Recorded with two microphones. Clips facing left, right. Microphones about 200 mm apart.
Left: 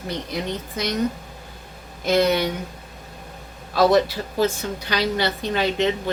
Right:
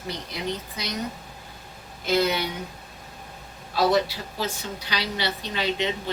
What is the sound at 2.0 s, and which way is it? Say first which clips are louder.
Speech: left 4 dB; 50° left (ahead or behind).